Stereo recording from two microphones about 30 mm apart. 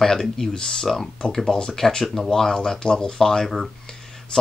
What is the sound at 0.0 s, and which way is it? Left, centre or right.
Speech, centre.